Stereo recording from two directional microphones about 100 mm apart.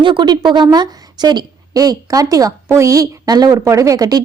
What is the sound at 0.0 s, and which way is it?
A woman's voice, 50° right (ahead or behind).